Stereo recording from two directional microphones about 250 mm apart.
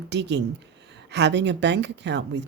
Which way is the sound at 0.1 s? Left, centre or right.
Right.